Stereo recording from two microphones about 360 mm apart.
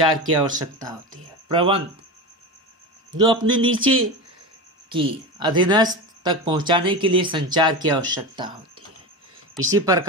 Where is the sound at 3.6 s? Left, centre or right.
Right.